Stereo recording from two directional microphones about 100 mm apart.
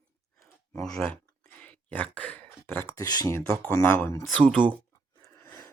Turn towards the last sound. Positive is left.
turn(degrees=5)  # may be behind; listen again after turning